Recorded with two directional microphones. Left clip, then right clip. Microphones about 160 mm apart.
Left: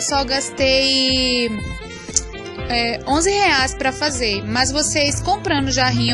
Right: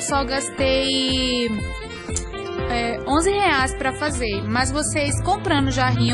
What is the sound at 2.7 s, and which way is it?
A woman's voice, 20° left (ahead or behind).